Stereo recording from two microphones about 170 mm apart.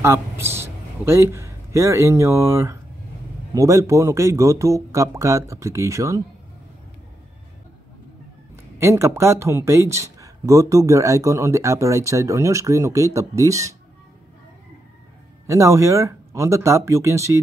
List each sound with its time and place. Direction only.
0.0 s a man's voice: 15° right (ahead or behind)
8.7 s speech: 15° right (ahead or behind)
15.4 s speech: 20° right (ahead or behind)